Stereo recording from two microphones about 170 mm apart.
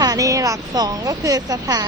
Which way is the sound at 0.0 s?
20° right (ahead or behind).